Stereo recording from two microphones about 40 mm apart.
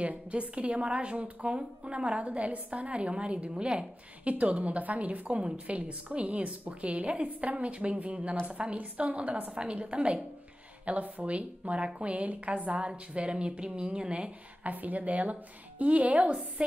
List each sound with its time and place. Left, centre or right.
0.0 s a woman's voice: right
3.5 s speech: right
4.2 s a woman's voice: right
14.6 s a woman's voice: right